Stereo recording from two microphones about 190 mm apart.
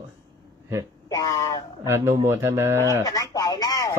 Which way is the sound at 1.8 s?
15° right (ahead or behind).